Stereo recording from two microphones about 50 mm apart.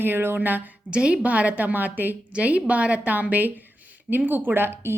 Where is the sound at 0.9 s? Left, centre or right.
Right.